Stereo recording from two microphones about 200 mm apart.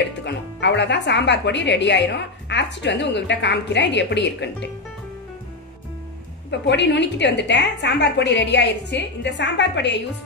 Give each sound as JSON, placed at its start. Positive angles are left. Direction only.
{"t": 0.2, "sound": "speech", "side_deg": 60}
{"t": 6.6, "sound": "speech", "side_deg": 60}